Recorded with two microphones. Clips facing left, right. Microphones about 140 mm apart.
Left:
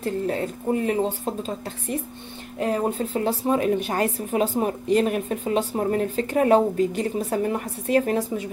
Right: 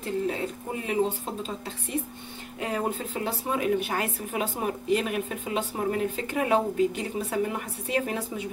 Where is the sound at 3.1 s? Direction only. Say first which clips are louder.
Left 7 dB; 35° left (ahead or behind).